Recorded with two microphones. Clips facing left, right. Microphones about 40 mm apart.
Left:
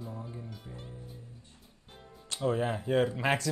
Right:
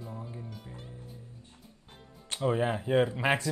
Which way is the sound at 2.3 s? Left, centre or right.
Right.